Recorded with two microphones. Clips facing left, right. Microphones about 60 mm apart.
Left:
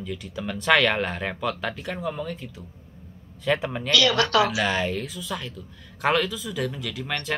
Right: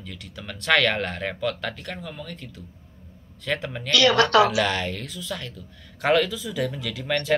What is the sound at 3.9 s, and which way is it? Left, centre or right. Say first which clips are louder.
Speech: right 3 dB; right.